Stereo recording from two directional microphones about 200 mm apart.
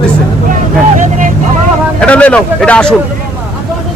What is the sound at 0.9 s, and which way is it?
Vehicle, 40° right (ahead or behind).